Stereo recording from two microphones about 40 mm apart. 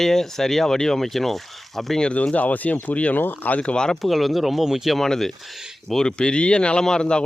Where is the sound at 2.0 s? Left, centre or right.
Left.